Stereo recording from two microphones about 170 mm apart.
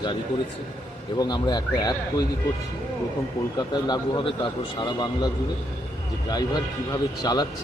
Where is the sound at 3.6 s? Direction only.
25° left (ahead or behind).